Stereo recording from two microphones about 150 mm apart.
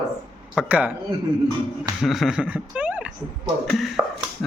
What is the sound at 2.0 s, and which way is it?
Speech, centre (ahead or behind).